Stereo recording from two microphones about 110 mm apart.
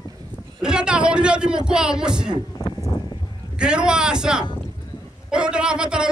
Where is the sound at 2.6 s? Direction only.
35° left (ahead or behind).